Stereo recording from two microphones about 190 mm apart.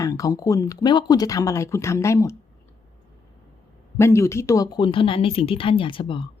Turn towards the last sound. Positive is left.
turn(degrees=25)  # may be behind; listen again after turning